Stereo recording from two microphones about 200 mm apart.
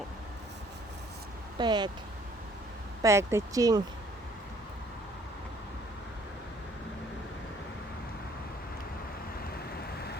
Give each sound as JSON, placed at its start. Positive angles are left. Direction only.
{"t": 1.5, "sound": "speech", "side_deg": -20}
{"t": 3.0, "sound": "speech", "side_deg": -15}